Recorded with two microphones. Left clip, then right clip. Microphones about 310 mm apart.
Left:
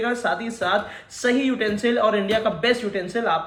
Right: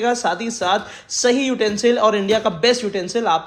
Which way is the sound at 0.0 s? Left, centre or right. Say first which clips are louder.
Right 4 dB; centre.